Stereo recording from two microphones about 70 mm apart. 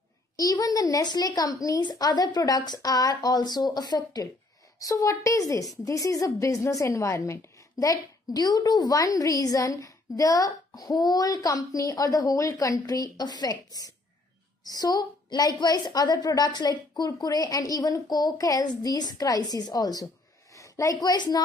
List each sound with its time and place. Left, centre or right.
0.4 s a woman's voice: left
4.7 s a woman's voice: left
7.8 s a woman's voice: left
9.1 s a woman's voice: left
17.1 s a woman's voice: left
20.5 s a sound: left
21.0 s a woman's voice: left